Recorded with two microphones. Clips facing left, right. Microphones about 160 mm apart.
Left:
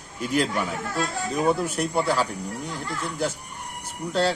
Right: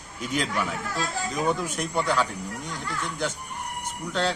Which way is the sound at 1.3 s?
10° left (ahead or behind).